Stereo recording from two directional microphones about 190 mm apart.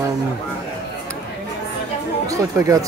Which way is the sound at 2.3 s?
15° right (ahead or behind).